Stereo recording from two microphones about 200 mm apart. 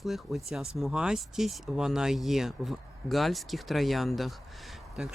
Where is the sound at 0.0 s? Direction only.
Centre (ahead or behind).